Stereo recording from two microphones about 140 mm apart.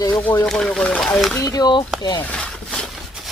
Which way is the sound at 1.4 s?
25° left (ahead or behind).